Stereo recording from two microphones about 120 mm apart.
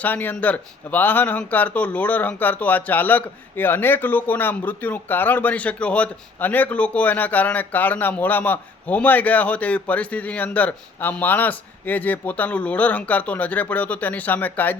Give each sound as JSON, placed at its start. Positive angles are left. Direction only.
{"t": 0.0, "sound": "speech", "side_deg": 15}